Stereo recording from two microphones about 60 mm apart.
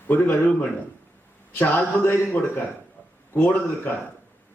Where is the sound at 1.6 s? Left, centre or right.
Left.